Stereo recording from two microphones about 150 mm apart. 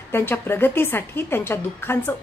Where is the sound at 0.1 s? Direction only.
15° left (ahead or behind).